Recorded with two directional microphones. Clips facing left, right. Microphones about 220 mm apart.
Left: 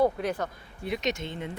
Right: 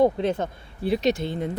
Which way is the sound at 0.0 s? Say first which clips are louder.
Right 5 dB; 25° right (ahead or behind).